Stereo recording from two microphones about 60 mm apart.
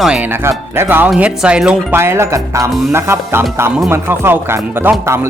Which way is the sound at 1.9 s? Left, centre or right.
Right.